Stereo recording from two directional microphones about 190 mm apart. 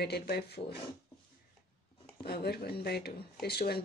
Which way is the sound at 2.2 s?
55° left (ahead or behind).